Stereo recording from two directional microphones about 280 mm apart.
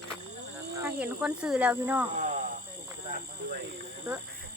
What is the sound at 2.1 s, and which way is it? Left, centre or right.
Cricket, right.